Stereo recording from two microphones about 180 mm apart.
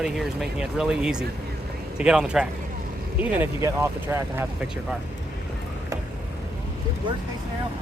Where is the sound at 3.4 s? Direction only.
15° right (ahead or behind).